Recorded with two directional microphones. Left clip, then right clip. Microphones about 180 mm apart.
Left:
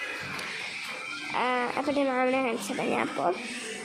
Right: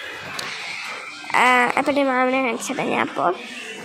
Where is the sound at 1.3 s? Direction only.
15° right (ahead or behind).